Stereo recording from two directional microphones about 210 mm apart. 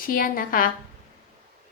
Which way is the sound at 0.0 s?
40° left (ahead or behind).